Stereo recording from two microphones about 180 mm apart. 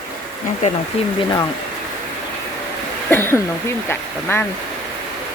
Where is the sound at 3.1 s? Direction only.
15° left (ahead or behind).